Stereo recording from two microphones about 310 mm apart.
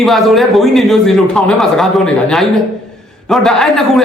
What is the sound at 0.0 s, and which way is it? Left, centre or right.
A man's voice, centre.